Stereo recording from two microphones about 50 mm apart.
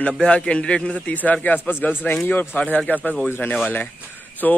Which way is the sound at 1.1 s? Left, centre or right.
Left.